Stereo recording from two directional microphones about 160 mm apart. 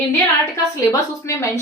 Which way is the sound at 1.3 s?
15° left (ahead or behind).